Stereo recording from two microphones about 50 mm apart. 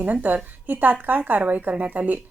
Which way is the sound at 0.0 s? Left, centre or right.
Right.